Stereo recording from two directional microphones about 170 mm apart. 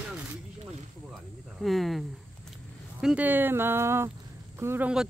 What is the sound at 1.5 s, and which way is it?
Speech, centre (ahead or behind).